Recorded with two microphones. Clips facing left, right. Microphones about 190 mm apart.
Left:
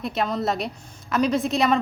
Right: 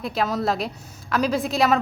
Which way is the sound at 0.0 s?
Centre (ahead or behind).